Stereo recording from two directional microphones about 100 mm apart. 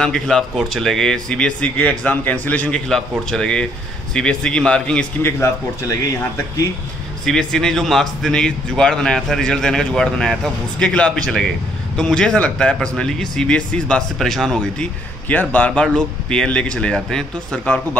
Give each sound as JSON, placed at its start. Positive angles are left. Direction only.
{"t": 0.0, "sound": "speech", "side_deg": 5}
{"t": 5.2, "sound": "a man's voice", "side_deg": 30}
{"t": 7.2, "sound": "speech", "side_deg": 5}
{"t": 15.2, "sound": "speech", "side_deg": 15}